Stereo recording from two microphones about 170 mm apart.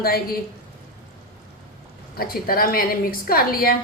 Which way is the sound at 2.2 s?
60° left (ahead or behind).